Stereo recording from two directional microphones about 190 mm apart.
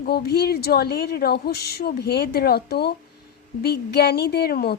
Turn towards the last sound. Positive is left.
turn(degrees=55)  # may be behind; listen again after turning